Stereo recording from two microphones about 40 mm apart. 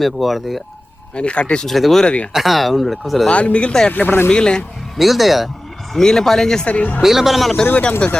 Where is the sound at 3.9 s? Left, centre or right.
Left.